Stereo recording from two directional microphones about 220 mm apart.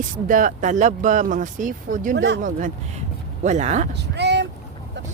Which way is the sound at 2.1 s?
50° right (ahead or behind).